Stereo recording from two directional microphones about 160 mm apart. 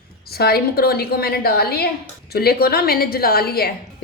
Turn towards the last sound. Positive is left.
turn(degrees=75)  # may be behind; listen again after turning